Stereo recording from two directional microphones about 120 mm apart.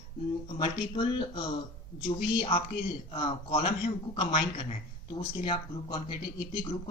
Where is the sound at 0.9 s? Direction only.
45° left (ahead or behind).